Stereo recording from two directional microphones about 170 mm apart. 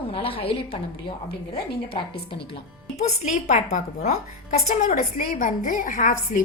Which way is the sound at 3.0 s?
40° left (ahead or behind).